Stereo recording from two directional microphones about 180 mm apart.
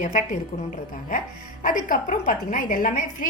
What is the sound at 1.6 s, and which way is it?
A woman's voice, 45° left (ahead or behind).